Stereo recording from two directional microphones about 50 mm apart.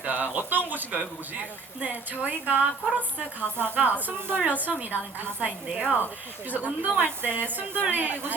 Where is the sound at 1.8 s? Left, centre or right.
Right.